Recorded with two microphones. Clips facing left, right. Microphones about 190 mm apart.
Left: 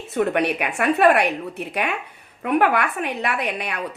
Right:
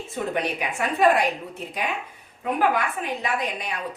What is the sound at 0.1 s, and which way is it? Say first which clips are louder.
A woman's voice: left 7 dB; 65° left (ahead or behind).